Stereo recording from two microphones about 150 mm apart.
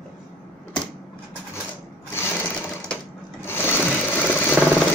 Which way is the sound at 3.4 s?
15° left (ahead or behind).